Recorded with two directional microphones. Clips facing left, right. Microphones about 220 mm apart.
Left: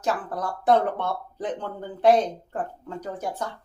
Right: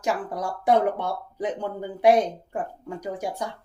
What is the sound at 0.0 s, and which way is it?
Speech, 10° right (ahead or behind).